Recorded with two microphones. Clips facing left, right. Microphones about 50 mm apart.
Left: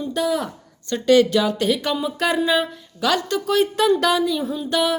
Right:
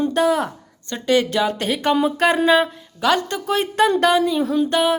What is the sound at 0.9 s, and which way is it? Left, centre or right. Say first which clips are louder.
A woman's voice: left 3 dB; right.